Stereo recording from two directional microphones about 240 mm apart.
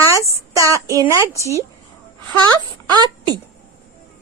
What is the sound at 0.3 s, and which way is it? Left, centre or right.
Child singing, centre.